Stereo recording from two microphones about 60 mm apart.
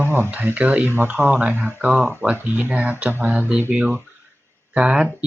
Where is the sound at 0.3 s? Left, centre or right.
Right.